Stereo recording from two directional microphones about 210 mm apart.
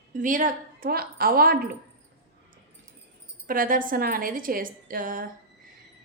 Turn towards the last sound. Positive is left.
turn(degrees=-40)  # may be behind; listen again after turning